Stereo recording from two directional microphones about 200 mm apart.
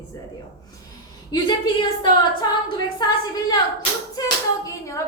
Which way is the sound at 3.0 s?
20° left (ahead or behind).